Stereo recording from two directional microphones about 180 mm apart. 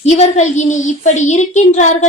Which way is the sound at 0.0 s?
40° left (ahead or behind).